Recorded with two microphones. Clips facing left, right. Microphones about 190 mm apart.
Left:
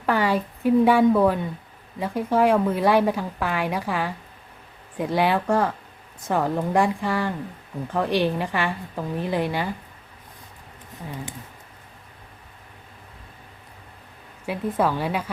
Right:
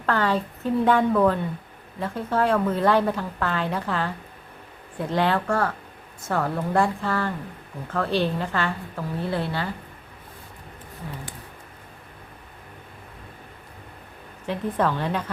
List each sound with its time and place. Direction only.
0.0 s a woman's voice: 10° left (ahead or behind)
14.4 s a woman's voice: 10° left (ahead or behind)